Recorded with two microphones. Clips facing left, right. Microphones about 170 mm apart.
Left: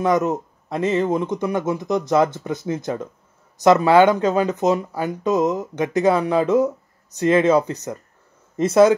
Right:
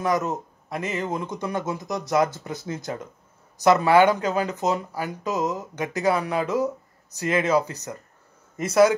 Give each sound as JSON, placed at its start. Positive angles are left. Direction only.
{"t": 0.0, "sound": "speech", "side_deg": 25}